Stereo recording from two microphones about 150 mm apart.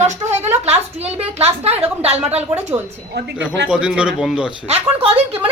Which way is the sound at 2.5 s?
15° right (ahead or behind).